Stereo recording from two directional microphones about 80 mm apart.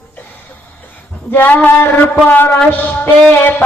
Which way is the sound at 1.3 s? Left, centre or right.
Left.